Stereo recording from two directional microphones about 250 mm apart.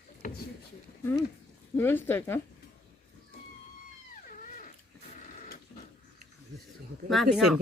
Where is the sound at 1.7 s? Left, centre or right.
Centre.